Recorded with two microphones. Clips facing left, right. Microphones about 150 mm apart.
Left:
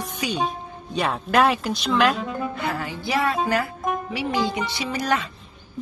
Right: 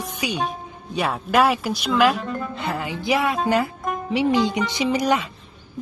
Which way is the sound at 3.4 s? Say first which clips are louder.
Right 2 dB; 20° right (ahead or behind).